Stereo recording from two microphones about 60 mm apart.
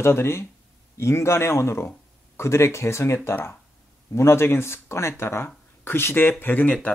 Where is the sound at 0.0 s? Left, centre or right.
Left.